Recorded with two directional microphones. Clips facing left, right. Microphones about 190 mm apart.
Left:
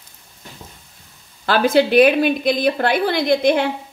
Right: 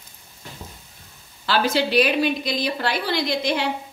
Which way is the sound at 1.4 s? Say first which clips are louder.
Left 6 dB; 55° left (ahead or behind).